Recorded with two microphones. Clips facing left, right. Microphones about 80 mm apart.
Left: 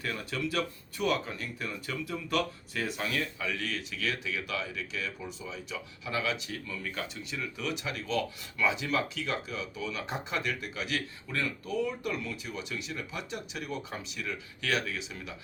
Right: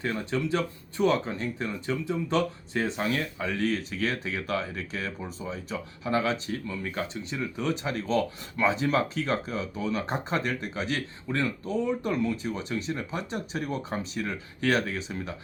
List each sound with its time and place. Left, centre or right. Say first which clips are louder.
0.0 s speech: right 5 dB; right